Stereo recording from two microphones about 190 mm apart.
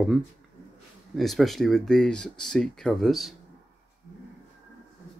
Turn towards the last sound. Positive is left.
turn(degrees=0)  # may be behind; listen again after turning